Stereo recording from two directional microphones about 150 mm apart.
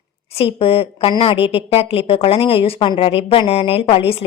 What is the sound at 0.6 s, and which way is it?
A woman's voice, 40° left (ahead or behind).